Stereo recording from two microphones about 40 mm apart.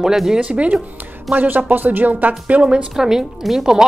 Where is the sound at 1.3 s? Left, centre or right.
Right.